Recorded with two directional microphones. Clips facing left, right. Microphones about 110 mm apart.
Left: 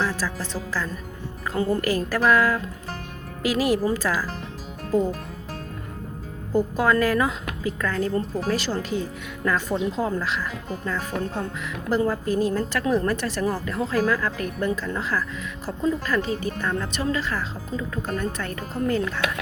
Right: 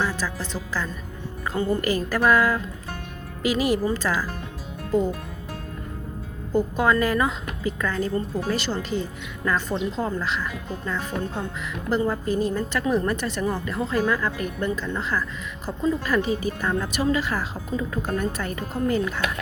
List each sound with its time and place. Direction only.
0.0 s a woman's voice: centre (ahead or behind)
6.5 s a woman's voice: 5° left (ahead or behind)
17.3 s speech: 20° right (ahead or behind)
18.2 s a woman's voice: 5° right (ahead or behind)